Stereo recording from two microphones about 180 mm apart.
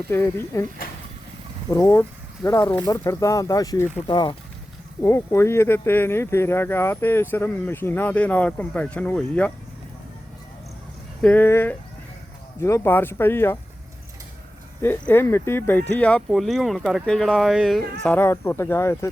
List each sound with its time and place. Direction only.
0.1 s speech: 10° left (ahead or behind)
1.7 s speech: 15° left (ahead or behind)
11.2 s speech: 10° left (ahead or behind)
14.8 s speech: 10° left (ahead or behind)
18.0 s speech: 10° left (ahead or behind)